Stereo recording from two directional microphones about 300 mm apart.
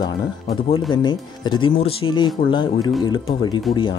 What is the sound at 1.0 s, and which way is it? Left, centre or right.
Speech, centre.